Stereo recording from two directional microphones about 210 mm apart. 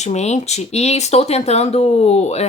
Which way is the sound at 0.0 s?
30° left (ahead or behind).